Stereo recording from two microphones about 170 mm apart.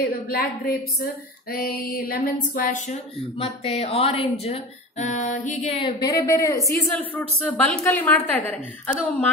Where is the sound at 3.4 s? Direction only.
35° left (ahead or behind).